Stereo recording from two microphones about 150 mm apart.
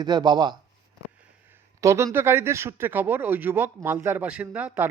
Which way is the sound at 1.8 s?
20° right (ahead or behind).